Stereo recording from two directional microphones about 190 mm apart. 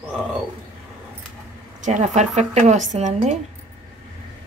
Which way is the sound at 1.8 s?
40° right (ahead or behind).